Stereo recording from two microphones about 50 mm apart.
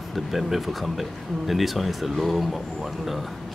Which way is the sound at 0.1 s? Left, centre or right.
Centre.